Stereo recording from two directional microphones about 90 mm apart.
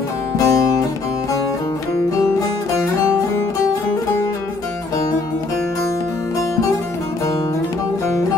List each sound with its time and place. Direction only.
0.4 s music: 45° left (ahead or behind)